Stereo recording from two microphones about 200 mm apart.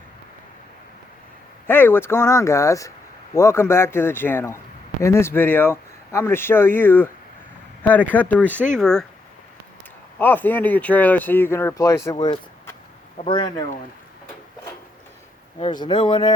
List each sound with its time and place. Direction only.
1.6 s a man's voice: 10° left (ahead or behind)
10.2 s a man's voice: 10° left (ahead or behind)
15.5 s speech: 25° left (ahead or behind)